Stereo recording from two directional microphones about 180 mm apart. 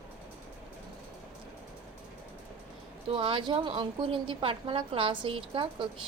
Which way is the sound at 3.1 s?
30° right (ahead or behind).